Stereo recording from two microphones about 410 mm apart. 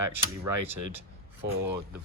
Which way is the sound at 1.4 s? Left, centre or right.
Centre.